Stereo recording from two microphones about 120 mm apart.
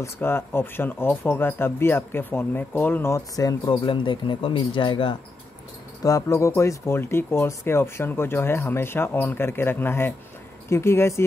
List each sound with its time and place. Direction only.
0.0 s speech: 20° left (ahead or behind)
3.8 s speech: 45° left (ahead or behind)
6.0 s speech: 25° left (ahead or behind)